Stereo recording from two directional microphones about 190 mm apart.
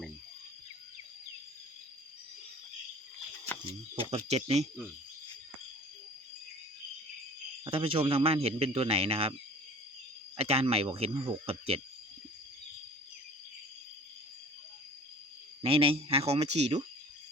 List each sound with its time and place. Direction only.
3.7 s a man's voice: 30° right (ahead or behind)
7.6 s a man's voice: 25° right (ahead or behind)
10.3 s speech: 30° right (ahead or behind)
15.6 s speech: 30° right (ahead or behind)